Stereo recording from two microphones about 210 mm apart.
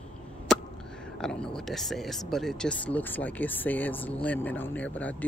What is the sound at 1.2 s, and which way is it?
Speech, 5° left (ahead or behind).